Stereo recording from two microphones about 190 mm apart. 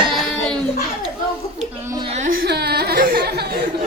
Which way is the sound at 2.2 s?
50° right (ahead or behind).